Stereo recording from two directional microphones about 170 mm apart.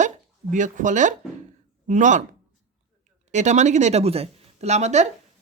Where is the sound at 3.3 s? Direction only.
45° right (ahead or behind).